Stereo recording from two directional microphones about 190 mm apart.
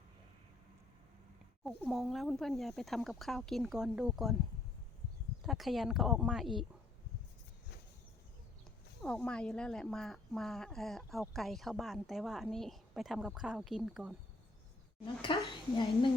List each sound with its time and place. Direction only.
1.6 s speech: centre (ahead or behind)
5.5 s speech: centre (ahead or behind)
9.0 s speech: 5° left (ahead or behind)
15.0 s speech: 25° left (ahead or behind)